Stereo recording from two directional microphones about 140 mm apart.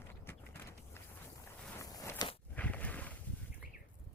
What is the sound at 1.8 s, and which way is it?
Walk, 25° left (ahead or behind).